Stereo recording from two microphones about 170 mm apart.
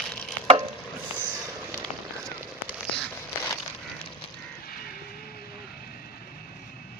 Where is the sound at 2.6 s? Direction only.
5° left (ahead or behind).